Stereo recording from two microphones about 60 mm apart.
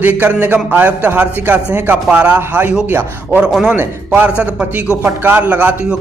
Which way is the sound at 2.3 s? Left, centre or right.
Right.